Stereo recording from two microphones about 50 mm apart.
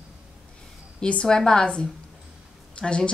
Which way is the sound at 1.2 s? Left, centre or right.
Centre.